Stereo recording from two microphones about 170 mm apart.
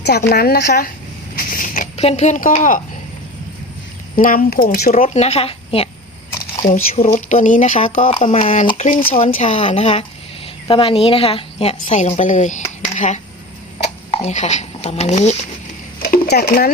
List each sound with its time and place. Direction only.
0.3 s a woman's voice: 65° left (ahead or behind)
1.4 s a sound: 55° left (ahead or behind)
2.0 s speech: 40° left (ahead or behind)
4.2 s speech: 55° left (ahead or behind); by 5.9 s 35° left (ahead or behind)
6.9 s speech: 40° left (ahead or behind)
8.8 s speech: 50° left (ahead or behind)
16.0 s a sound: 65° left (ahead or behind)
16.5 s speech: 60° left (ahead or behind)